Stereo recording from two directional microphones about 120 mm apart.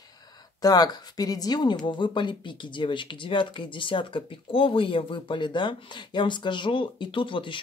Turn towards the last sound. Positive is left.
turn(degrees=45)  # may be behind; listen again after turning